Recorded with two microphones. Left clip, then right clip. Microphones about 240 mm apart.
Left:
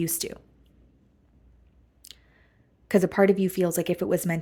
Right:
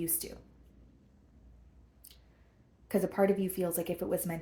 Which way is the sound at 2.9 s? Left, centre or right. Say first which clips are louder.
Left 8 dB; left.